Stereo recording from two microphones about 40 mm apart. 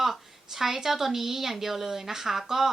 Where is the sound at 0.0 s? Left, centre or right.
Centre.